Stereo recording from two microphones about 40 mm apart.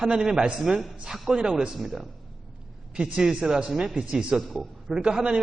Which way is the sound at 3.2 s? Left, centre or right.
Centre.